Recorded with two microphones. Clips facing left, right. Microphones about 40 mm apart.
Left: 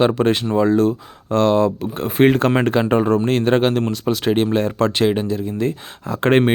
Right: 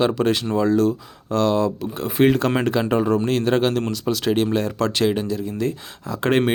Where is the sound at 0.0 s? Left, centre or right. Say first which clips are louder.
Left 3 dB; left.